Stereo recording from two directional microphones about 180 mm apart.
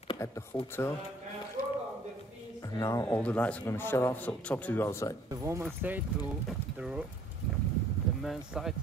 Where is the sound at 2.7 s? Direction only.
20° left (ahead or behind).